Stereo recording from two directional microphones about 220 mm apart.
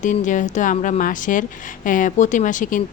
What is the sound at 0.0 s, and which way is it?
A woman's voice, 35° left (ahead or behind).